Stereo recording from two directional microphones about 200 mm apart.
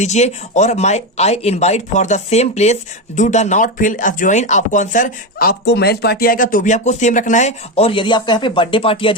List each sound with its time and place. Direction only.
0.0 s speech: 35° left (ahead or behind)